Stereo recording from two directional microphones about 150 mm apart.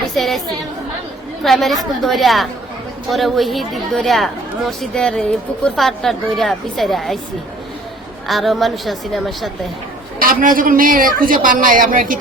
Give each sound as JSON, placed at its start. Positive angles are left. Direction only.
{"t": 0.1, "sound": "a woman's voice", "side_deg": 0}
{"t": 1.5, "sound": "a woman's voice", "side_deg": 0}
{"t": 8.3, "sound": "a woman's voice", "side_deg": 0}
{"t": 10.2, "sound": "a man's voice", "side_deg": -70}